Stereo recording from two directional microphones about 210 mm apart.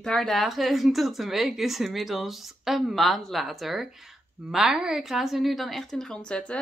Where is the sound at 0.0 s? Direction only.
Centre (ahead or behind).